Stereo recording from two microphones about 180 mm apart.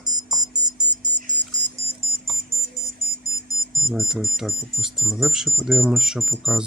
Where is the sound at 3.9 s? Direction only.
Centre (ahead or behind).